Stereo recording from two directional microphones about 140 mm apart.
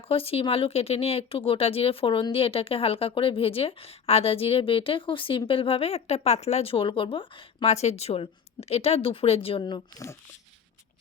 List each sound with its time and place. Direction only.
0.1 s speech: 45° left (ahead or behind)